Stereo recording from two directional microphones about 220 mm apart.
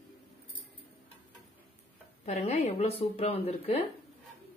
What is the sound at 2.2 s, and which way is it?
A woman's voice, 30° left (ahead or behind).